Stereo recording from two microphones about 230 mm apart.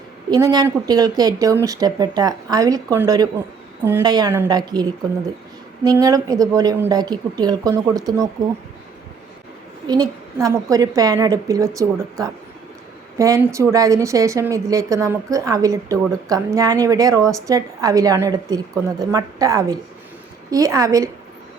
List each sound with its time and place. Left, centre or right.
0.3 s a woman's voice: centre
9.8 s a woman's voice: centre